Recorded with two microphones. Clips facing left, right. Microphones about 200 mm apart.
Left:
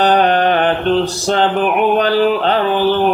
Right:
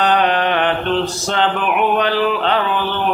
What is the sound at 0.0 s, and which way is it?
Mantra, 40° left (ahead or behind).